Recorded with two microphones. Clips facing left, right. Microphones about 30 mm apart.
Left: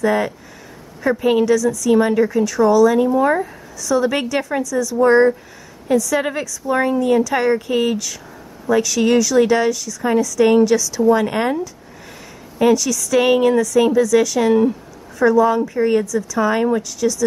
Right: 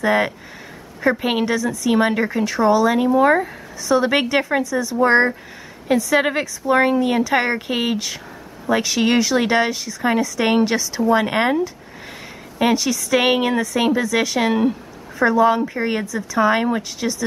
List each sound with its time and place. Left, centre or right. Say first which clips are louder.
0.0 s speech: even; right